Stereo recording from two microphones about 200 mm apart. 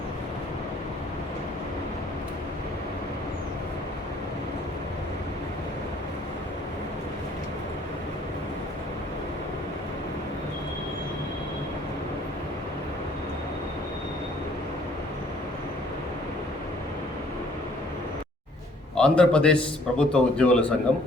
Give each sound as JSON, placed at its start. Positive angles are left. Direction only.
{"t": 18.9, "sound": "a man's voice", "side_deg": 5}